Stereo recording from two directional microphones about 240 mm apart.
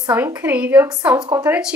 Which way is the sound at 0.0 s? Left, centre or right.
Centre.